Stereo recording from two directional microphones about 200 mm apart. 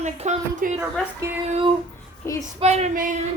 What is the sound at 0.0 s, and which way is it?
Speech, 35° right (ahead or behind).